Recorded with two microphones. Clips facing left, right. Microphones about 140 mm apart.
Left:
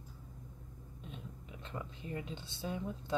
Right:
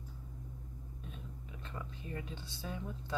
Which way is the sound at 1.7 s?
20° left (ahead or behind).